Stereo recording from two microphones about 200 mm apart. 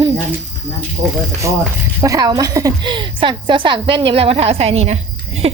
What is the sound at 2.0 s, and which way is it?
A woman's voice, 20° right (ahead or behind).